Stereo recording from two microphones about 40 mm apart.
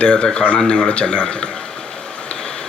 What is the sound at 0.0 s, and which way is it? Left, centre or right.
Speech, left.